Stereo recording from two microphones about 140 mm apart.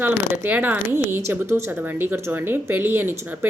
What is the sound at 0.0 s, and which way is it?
A woman's voice, 15° right (ahead or behind).